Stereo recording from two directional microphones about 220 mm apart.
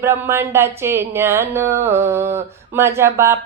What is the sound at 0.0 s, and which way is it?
Speech, 10° right (ahead or behind).